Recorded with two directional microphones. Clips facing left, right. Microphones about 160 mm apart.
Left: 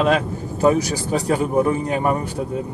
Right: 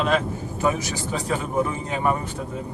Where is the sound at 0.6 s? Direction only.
40° left (ahead or behind).